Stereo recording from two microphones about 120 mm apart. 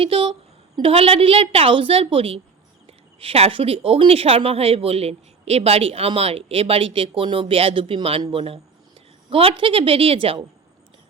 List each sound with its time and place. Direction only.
0.0 s speech: 50° right (ahead or behind)